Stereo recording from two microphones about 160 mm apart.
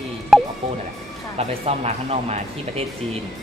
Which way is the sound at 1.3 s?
40° right (ahead or behind).